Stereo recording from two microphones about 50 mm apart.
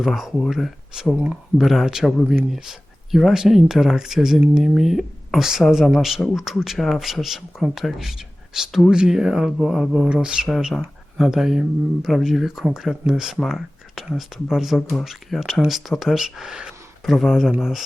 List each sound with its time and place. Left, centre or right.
0.0 s speech: centre
1.1 s speech: right
1.5 s speech: centre
10.1 s speech: centre
17.1 s speech: centre